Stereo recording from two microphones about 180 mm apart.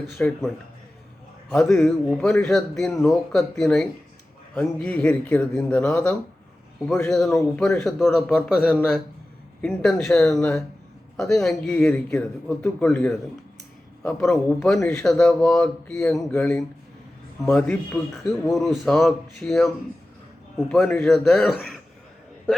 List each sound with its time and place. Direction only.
0.2 s speech: 5° left (ahead or behind)
21.1 s speech: centre (ahead or behind)